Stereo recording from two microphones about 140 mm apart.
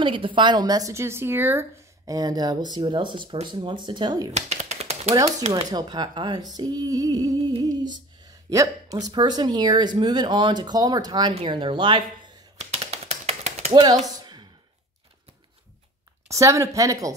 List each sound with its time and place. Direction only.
0.0 s female singing: 40° right (ahead or behind)
3.4 s speech: 35° right (ahead or behind)
4.3 s typing: 50° right (ahead or behind)
5.5 s speech: 30° right (ahead or behind)
6.5 s female singing: 30° right (ahead or behind)
11.3 s speech: 35° right (ahead or behind)
12.5 s typing: 50° right (ahead or behind)
13.7 s speech: 35° right (ahead or behind)
14.2 s a sound: 35° right (ahead or behind)
16.3 s female singing: 20° right (ahead or behind)